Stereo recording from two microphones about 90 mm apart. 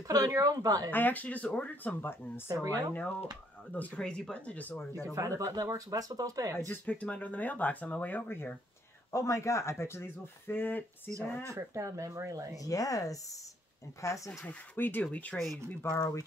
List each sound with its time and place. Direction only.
0.1 s speech: 40° right (ahead or behind)
0.8 s speech: 20° left (ahead or behind)
2.4 s speech: 40° right (ahead or behind)
2.9 s speech: 15° left (ahead or behind)
5.1 s speech: 35° right (ahead or behind)
6.6 s speech: 20° left (ahead or behind)
9.1 s speech: 35° left (ahead or behind)
11.4 s speech: 35° right (ahead or behind)
12.5 s speech: 40° left (ahead or behind)
14.4 s speech: 20° left (ahead or behind)
15.8 s speech: 25° left (ahead or behind)